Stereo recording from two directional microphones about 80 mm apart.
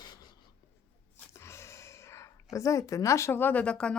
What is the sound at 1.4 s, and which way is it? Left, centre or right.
A woman's voice, left.